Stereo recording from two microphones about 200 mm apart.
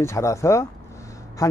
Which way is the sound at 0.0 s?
15° left (ahead or behind).